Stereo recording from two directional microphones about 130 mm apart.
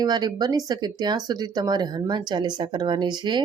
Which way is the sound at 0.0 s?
35° right (ahead or behind).